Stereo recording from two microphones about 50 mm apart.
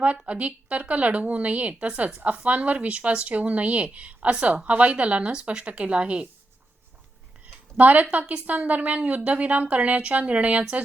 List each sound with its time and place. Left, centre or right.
0.3 s speech: right
7.4 s a sound: right
8.1 s speech: right